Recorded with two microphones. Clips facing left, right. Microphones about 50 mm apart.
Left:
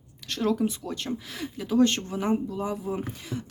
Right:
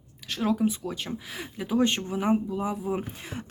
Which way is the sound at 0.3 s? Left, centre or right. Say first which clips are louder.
Even; centre.